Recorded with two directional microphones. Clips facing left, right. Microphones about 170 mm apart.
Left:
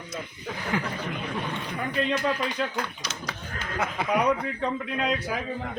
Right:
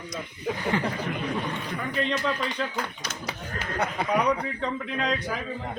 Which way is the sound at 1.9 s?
5° left (ahead or behind).